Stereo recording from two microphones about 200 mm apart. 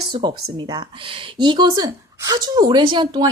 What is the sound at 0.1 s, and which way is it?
Speech, 20° right (ahead or behind).